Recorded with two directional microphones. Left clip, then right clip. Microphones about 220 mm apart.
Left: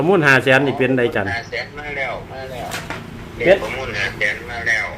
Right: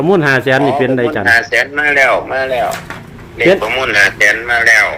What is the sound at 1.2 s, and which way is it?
A man's voice, 50° right (ahead or behind).